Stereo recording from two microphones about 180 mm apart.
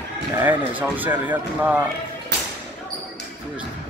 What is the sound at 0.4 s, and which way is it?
Speech, 10° right (ahead or behind).